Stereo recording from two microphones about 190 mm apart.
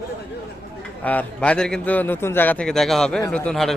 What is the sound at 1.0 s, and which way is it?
A man's voice, 5° left (ahead or behind).